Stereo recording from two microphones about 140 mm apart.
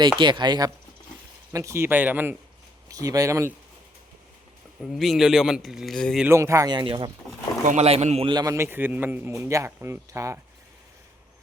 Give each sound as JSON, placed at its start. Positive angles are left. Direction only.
{"t": 0.2, "sound": "speech", "side_deg": -35}
{"t": 1.5, "sound": "speech", "side_deg": -20}
{"t": 2.9, "sound": "speech", "side_deg": -25}
{"t": 4.9, "sound": "a man's voice", "side_deg": 0}
{"t": 6.2, "sound": "speech", "side_deg": -20}
{"t": 7.6, "sound": "speech", "side_deg": -65}
{"t": 7.9, "sound": "a man's voice", "side_deg": -45}
{"t": 8.3, "sound": "speech", "side_deg": -25}